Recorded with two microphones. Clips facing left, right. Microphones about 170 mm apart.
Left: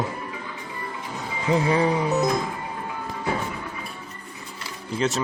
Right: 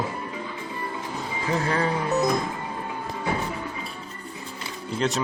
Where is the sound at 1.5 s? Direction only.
15° left (ahead or behind).